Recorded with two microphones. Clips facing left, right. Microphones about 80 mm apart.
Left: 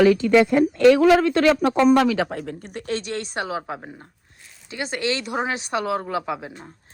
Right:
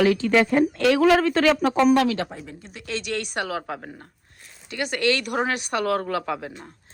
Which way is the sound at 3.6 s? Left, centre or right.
Centre.